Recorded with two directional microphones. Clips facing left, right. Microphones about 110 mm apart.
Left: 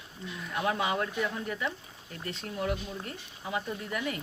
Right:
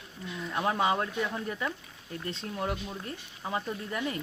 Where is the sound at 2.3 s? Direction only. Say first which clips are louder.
Left 1 dB; 30° right (ahead or behind).